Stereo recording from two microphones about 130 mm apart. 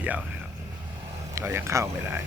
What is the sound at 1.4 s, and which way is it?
Speech, 20° right (ahead or behind).